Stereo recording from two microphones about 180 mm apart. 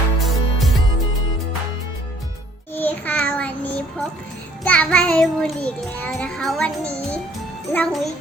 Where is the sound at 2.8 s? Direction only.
10° left (ahead or behind).